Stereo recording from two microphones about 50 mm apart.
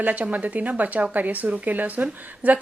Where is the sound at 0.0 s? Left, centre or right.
Right.